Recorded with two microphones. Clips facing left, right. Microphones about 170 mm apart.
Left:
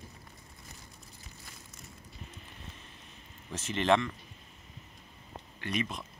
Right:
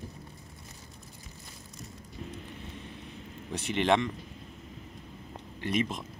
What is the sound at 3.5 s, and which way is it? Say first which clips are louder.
Speech: right 1 dB; 15° right (ahead or behind).